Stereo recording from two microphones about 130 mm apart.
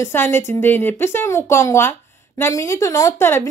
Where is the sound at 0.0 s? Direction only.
20° left (ahead or behind).